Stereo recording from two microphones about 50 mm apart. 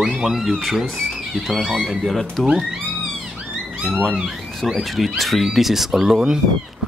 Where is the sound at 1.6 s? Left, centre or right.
Centre.